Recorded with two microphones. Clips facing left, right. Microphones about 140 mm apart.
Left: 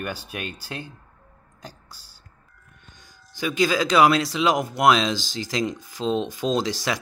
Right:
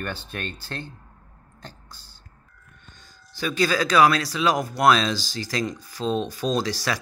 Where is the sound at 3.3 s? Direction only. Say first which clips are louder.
Left 1 dB; 15° left (ahead or behind).